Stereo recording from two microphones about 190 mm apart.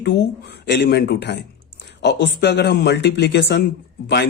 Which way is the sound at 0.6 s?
60° left (ahead or behind).